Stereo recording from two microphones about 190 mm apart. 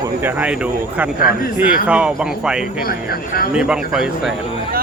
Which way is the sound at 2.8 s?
50° left (ahead or behind).